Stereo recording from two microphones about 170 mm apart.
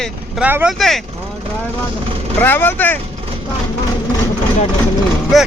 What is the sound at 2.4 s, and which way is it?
Speech, 10° left (ahead or behind).